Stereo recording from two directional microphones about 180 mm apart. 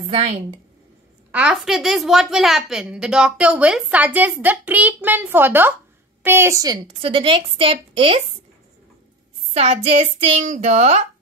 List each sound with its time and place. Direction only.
0.1 s a woman's voice: 30° right (ahead or behind)
1.3 s a woman's voice: 5° right (ahead or behind); by 8.2 s 30° right (ahead or behind)
9.5 s a woman's voice: 35° right (ahead or behind)